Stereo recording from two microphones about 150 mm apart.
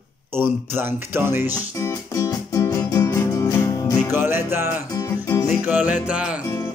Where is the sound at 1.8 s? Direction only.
20° left (ahead or behind).